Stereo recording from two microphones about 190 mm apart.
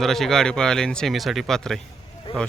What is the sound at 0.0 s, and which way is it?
Speech, centre (ahead or behind).